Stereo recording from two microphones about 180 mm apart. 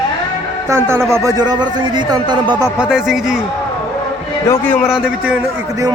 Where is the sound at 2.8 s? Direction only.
5° right (ahead or behind).